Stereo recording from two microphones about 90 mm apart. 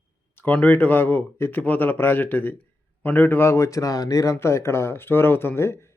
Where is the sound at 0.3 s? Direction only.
20° left (ahead or behind).